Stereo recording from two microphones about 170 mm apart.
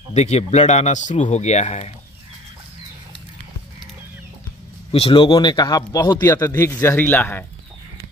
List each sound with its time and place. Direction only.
0.1 s speech: 40° left (ahead or behind)
4.9 s speech: 35° left (ahead or behind); by 7.4 s 10° left (ahead or behind)